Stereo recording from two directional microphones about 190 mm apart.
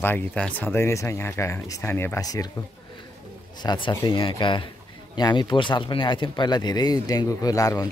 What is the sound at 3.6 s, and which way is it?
Speech, 25° left (ahead or behind).